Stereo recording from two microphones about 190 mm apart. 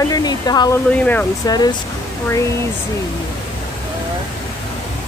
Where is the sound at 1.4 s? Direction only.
20° left (ahead or behind).